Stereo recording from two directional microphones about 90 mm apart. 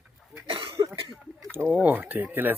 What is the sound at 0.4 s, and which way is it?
Cough, 90° right.